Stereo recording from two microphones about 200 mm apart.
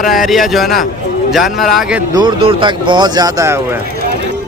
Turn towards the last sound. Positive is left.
turn(degrees=-15)  # may be behind; listen again after turning